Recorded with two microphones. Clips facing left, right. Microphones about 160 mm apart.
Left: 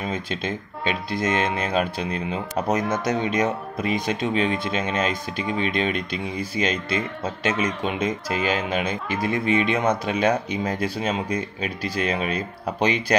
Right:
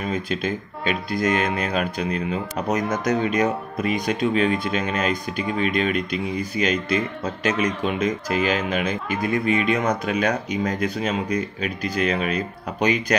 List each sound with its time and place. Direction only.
0.0 s speech: 25° left (ahead or behind)